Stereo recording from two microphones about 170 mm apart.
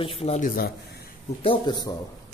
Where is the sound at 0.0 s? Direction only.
35° left (ahead or behind).